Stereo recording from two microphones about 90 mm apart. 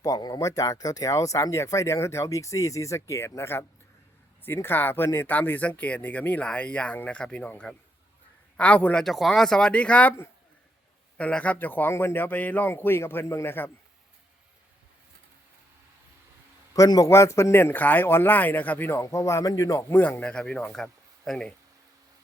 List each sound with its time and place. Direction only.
0.0 s speech: 45° left (ahead or behind); by 10.2 s 15° left (ahead or behind)
11.2 s speech: 15° left (ahead or behind)
16.7 s speech: 40° left (ahead or behind); by 18.9 s 20° left (ahead or behind)
18.9 s speech: 30° left (ahead or behind)
20.0 s speech: 20° left (ahead or behind)